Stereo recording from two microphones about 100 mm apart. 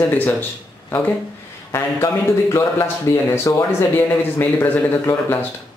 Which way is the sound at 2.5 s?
25° left (ahead or behind).